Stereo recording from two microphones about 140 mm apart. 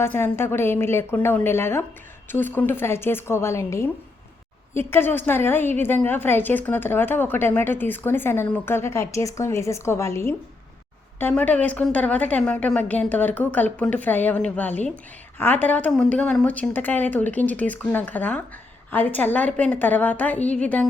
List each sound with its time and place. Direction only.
0.0 s a woman's voice: 15° left (ahead or behind)